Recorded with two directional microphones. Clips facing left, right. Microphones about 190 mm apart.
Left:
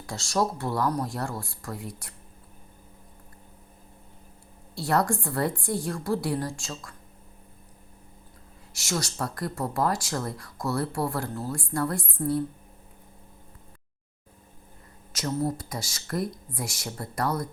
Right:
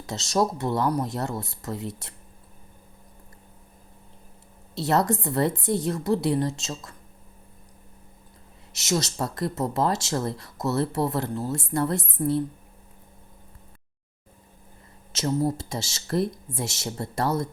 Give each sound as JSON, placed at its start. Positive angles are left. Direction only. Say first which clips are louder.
{"t": 0.0, "sound": "speech", "louder": "right 3 dB", "side_deg": -20}
{"t": 4.7, "sound": "speech", "louder": "right 2 dB", "side_deg": -20}
{"t": 8.7, "sound": "speech", "louder": "right 4 dB", "side_deg": -20}
{"t": 15.1, "sound": "speech", "louder": "right 3 dB", "side_deg": -25}